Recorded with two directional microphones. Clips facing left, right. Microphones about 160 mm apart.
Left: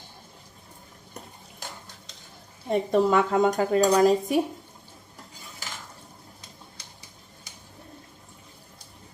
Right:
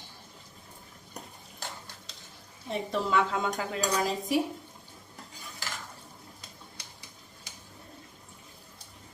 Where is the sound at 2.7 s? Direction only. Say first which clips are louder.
Left 8 dB; 50° left (ahead or behind).